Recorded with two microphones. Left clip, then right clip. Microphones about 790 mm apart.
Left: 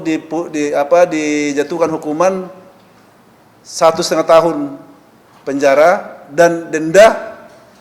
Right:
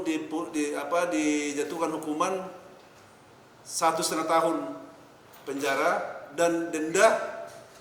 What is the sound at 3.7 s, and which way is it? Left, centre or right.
Speech, left.